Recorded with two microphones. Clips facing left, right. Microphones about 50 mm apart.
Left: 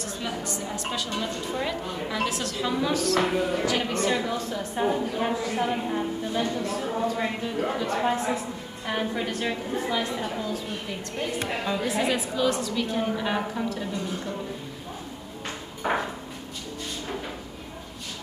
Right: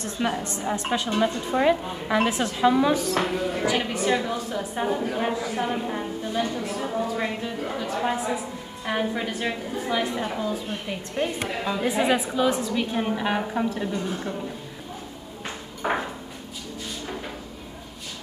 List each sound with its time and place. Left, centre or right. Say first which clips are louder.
0.0 s a woman's voice: right 5 dB; right; by 3.3 s centre
3.3 s a woman's voice: left 1 dB; centre
3.6 s a woman's voice: right 1 dB; centre
5.0 s a woman's voice: right 1 dB; centre
15.4 s ping: right 1 dB; centre